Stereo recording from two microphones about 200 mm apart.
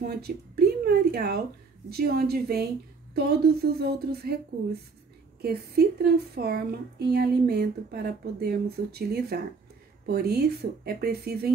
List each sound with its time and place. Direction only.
0.0 s a woman's voice: 50° right (ahead or behind)
5.4 s speech: 50° right (ahead or behind)